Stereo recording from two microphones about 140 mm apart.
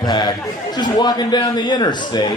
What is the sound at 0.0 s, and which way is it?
A man's voice, 30° left (ahead or behind).